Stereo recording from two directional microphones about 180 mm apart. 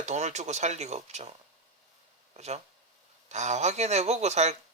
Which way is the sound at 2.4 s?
35° right (ahead or behind).